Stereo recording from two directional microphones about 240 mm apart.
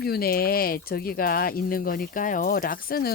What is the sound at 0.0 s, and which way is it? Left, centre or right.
Speech, left.